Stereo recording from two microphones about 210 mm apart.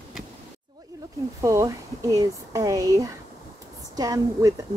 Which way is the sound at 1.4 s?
15° right (ahead or behind).